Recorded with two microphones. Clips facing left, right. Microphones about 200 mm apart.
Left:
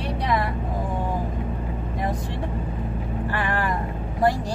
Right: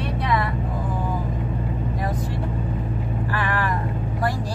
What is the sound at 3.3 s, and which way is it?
Speech, 25° left (ahead or behind).